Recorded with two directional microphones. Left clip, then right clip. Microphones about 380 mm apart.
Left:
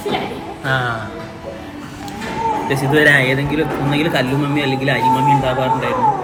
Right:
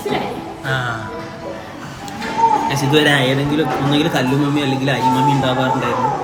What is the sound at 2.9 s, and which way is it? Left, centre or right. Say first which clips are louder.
Speech: left 3 dB; left.